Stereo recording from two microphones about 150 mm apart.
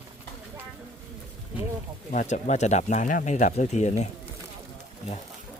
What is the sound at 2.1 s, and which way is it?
Speech, 55° left (ahead or behind).